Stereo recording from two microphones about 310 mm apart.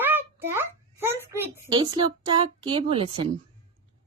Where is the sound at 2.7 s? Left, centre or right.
Centre.